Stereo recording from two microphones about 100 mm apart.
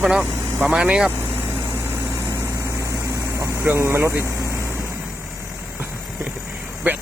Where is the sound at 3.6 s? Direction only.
25° right (ahead or behind).